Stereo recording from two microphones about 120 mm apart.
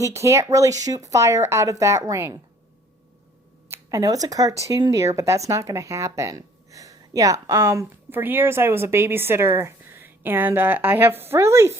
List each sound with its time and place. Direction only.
0.0 s a woman's voice: 25° right (ahead or behind)
3.7 s a woman's voice: 30° right (ahead or behind)